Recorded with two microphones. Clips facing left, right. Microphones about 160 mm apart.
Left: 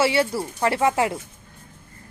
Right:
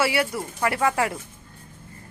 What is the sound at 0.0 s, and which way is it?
Speech, 25° left (ahead or behind).